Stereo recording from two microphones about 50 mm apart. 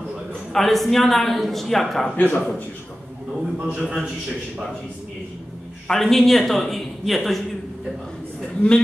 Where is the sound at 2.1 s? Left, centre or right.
Left.